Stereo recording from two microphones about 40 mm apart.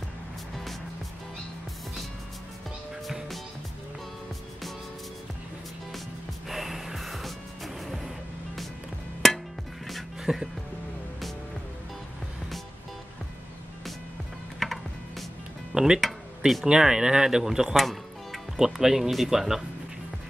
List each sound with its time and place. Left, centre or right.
6.5 s music: centre
9.2 s music: centre
10.2 s music: centre
14.6 s music: centre
15.7 s music: centre
16.0 s a sound: centre
16.6 s speech: centre
17.7 s music: centre
18.8 s speech: centre